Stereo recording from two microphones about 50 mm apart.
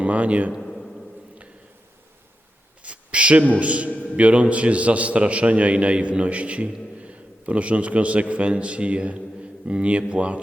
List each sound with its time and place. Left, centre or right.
0.0 s a man's voice: right
0.6 s a sound: centre
2.8 s a sound: right
3.6 s a man's voice: right
3.8 s a man's voice: left
4.2 s a man's voice: right